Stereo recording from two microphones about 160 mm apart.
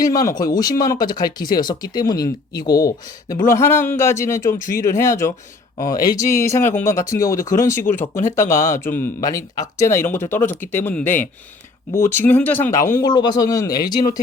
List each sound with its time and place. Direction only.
0.0 s speech: 20° left (ahead or behind)
12.9 s speech: 25° left (ahead or behind)